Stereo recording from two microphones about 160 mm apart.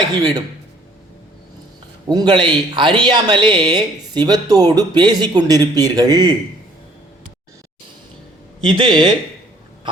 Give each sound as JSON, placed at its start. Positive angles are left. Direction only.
{"t": 0.1, "sound": "speech", "side_deg": -25}
{"t": 2.0, "sound": "speech", "side_deg": -25}
{"t": 8.6, "sound": "speech", "side_deg": -25}